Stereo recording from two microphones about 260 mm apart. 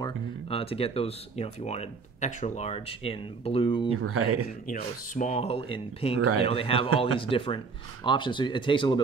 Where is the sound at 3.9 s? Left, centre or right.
Right.